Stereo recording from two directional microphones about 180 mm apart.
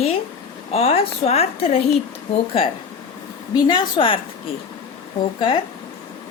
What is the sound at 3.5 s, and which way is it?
Speech, 25° left (ahead or behind).